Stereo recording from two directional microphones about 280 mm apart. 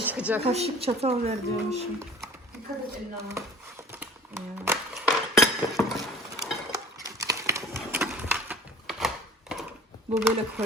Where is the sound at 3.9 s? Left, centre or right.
Centre.